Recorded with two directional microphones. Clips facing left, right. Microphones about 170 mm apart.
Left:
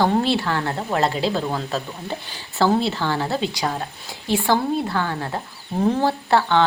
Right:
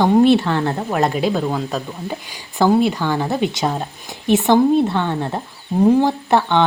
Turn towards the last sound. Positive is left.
turn(degrees=-20)  # may be behind; listen again after turning